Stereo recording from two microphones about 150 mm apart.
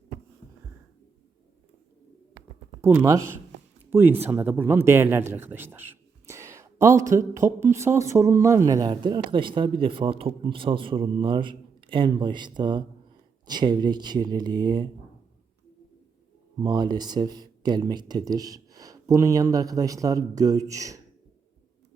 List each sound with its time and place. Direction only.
2.8 s speech: 15° right (ahead or behind)
16.6 s speech: 25° right (ahead or behind)